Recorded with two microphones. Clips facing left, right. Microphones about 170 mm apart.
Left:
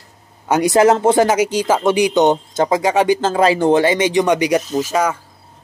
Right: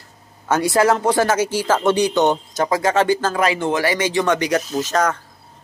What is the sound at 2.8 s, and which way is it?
Speech, 15° left (ahead or behind).